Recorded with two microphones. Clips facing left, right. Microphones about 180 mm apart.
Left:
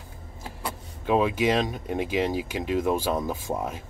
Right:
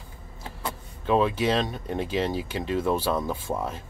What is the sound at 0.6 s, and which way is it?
Speech, 10° left (ahead or behind).